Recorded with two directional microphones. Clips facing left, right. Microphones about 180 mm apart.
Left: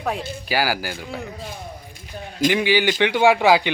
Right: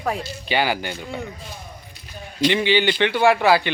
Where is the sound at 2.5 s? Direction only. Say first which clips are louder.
Even; 10° left (ahead or behind).